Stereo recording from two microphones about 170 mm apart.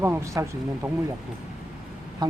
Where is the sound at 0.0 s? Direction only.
15° right (ahead or behind).